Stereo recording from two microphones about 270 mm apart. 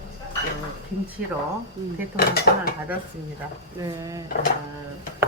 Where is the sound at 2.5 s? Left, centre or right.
Left.